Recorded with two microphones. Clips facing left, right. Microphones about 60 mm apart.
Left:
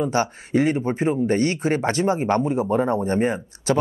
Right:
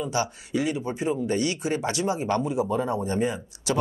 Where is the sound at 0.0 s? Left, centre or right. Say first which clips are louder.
Left 5 dB; left.